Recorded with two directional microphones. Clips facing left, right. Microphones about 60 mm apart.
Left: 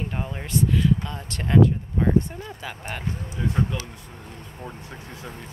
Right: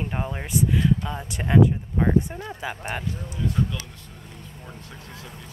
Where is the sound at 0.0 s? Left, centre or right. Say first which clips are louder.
Right 1 dB; centre.